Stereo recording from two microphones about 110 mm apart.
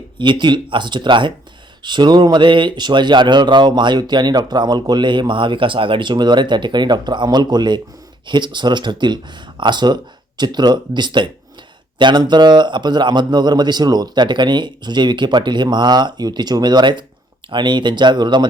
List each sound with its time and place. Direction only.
0.2 s speech: 45° right (ahead or behind)